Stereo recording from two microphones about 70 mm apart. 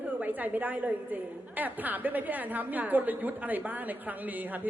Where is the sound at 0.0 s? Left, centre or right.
Right.